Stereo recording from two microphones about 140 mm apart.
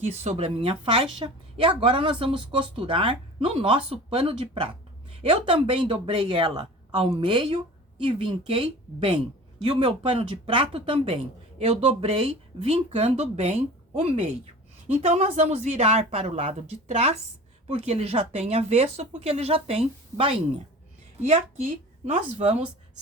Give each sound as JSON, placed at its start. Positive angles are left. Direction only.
{"t": 0.0, "sound": "a woman's voice", "side_deg": -50}
{"t": 6.9, "sound": "a woman's voice", "side_deg": -45}